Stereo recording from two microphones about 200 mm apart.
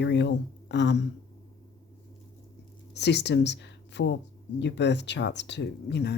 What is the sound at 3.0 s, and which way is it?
Speech, 60° left (ahead or behind).